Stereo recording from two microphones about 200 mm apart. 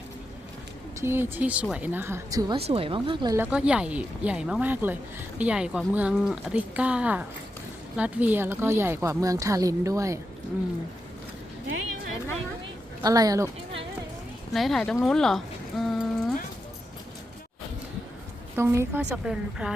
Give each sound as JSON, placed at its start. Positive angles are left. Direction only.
{"t": 1.0, "sound": "a woman's voice", "side_deg": -10}
{"t": 2.6, "sound": "a woman's voice", "side_deg": -30}
{"t": 3.3, "sound": "a woman's voice", "side_deg": -10}
{"t": 13.0, "sound": "a woman's voice", "side_deg": -20}
{"t": 14.5, "sound": "speech", "side_deg": 0}
{"t": 15.0, "sound": "a sound", "side_deg": 0}
{"t": 18.5, "sound": "a woman's voice", "side_deg": -15}